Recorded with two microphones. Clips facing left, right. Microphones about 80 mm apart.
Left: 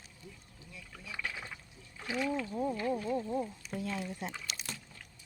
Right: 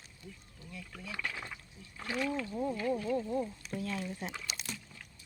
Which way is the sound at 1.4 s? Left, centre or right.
Centre.